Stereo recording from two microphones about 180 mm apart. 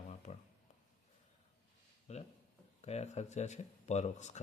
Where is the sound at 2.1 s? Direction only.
40° left (ahead or behind).